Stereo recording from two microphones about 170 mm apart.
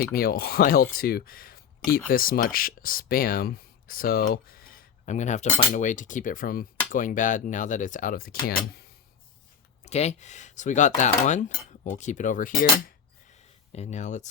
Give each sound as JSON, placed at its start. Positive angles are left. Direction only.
{"t": 0.1, "sound": "speech", "side_deg": 60}
{"t": 9.8, "sound": "speech", "side_deg": 40}
{"t": 13.7, "sound": "speech", "side_deg": 45}